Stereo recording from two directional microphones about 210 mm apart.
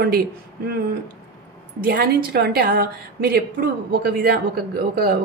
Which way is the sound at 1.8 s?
50° right (ahead or behind).